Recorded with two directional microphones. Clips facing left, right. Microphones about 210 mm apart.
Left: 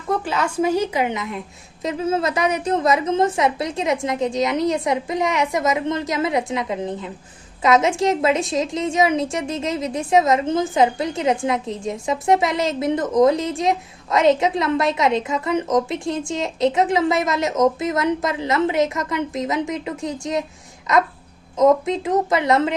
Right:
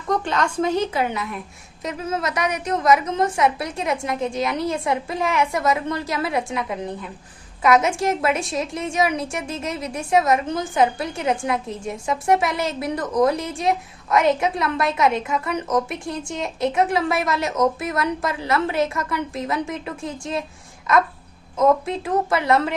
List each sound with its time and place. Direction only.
0.1 s a woman's voice: 5° left (ahead or behind)
21.6 s a woman's voice: 20° left (ahead or behind)